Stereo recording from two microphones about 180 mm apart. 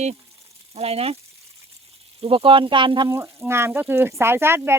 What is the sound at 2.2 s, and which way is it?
Speech, 30° right (ahead or behind).